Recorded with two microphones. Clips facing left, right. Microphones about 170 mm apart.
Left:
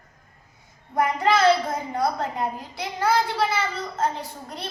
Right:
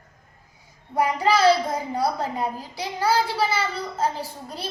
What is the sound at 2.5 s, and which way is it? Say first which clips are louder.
Speech: right 1 dB; 35° right (ahead or behind).